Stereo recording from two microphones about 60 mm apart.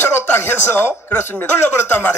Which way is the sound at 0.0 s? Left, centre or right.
Left.